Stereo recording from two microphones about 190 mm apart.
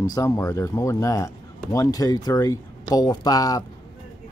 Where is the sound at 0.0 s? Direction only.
20° left (ahead or behind).